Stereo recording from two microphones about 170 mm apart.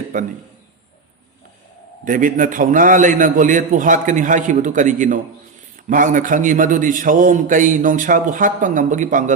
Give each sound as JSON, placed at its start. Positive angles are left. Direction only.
{"t": 0.1, "sound": "a man's voice", "side_deg": -50}
{"t": 2.0, "sound": "a man's voice", "side_deg": -50}